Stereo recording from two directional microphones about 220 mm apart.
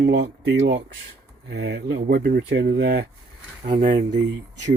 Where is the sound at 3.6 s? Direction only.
35° right (ahead or behind).